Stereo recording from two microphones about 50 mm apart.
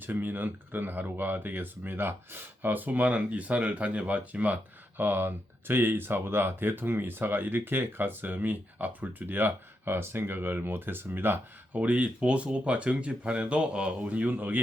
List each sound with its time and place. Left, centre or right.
0.0 s speech: right
11.7 s speech: right